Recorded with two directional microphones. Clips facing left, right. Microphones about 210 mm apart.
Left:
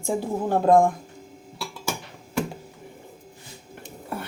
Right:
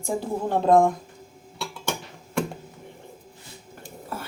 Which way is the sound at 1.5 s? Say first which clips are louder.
Right 1 dB; 5° left (ahead or behind).